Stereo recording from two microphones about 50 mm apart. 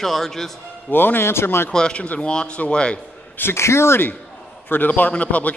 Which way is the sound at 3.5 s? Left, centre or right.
Left.